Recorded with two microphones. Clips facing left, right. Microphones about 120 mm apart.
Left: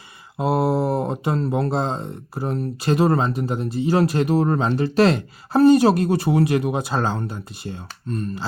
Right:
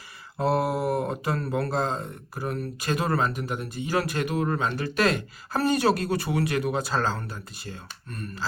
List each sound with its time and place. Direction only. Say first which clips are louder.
0.3 s speech: left 4 dB; 20° left (ahead or behind)